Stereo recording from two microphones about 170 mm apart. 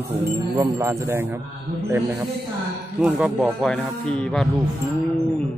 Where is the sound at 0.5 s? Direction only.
20° right (ahead or behind).